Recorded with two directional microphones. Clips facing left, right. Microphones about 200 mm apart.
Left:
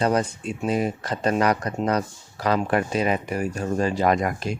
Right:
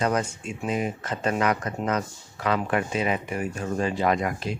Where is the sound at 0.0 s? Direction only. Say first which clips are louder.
Left 3 dB; 35° left (ahead or behind).